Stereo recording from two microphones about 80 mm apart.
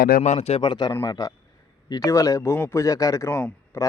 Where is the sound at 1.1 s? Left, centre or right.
Left.